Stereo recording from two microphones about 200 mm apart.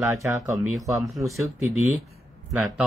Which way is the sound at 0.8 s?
15° right (ahead or behind).